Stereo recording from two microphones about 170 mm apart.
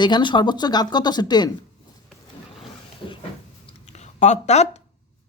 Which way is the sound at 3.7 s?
40° left (ahead or behind).